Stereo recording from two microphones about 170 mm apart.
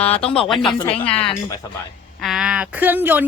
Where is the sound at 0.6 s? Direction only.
30° left (ahead or behind).